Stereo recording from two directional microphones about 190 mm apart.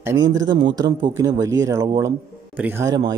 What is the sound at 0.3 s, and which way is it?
Speech, 20° right (ahead or behind).